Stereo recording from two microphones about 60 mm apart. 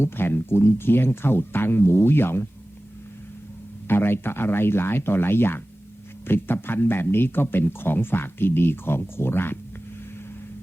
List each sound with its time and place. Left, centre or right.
0.0 s speech: left
3.8 s speech: left